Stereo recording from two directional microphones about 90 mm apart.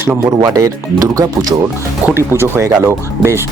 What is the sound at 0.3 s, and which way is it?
Speech, 40° right (ahead or behind).